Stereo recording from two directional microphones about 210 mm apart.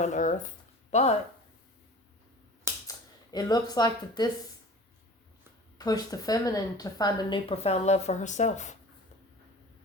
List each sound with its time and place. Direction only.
0.0 s speech: 35° left (ahead or behind)
3.3 s speech: 20° left (ahead or behind)
5.7 s speech: 15° left (ahead or behind); by 8.7 s 35° left (ahead or behind)